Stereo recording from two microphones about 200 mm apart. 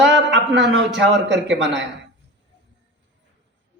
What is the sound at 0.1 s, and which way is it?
A man's voice, 60° right (ahead or behind).